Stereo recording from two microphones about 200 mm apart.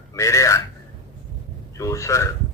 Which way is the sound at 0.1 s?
15° left (ahead or behind).